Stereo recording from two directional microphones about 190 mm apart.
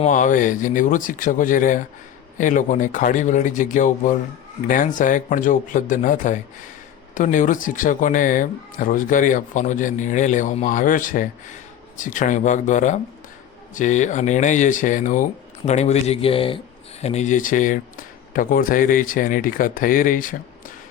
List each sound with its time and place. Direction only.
0.0 s speech: 40° left (ahead or behind)